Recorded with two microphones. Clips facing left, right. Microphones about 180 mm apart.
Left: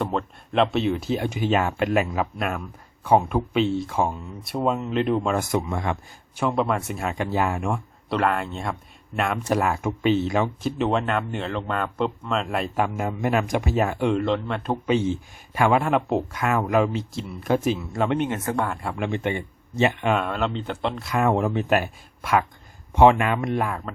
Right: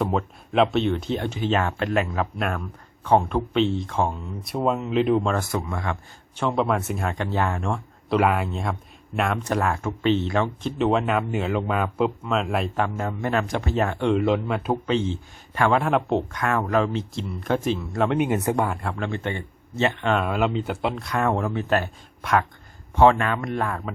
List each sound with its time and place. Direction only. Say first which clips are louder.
0.0 s speech: right 2 dB; centre (ahead or behind)
5.4 s speech: left 3 dB; 20° left (ahead or behind)
6.4 s speech: even; centre (ahead or behind)
8.2 s speech: even; 5° right (ahead or behind)
14.8 s speech: left 2 dB; 10° left (ahead or behind)
18.4 s speech: right 2 dB; 15° right (ahead or behind)
18.7 s speech: right 1 dB; centre (ahead or behind)
18.9 s speech: left 2 dB; 15° left (ahead or behind)
20.1 s speech: right 2 dB; 5° right (ahead or behind)
21.0 s speech: left 5 dB; 5° left (ahead or behind)
22.2 s speech: even; centre (ahead or behind)
23.0 s speech: left 1 dB; 15° left (ahead or behind)
23.6 s speech: right 1 dB; centre (ahead or behind)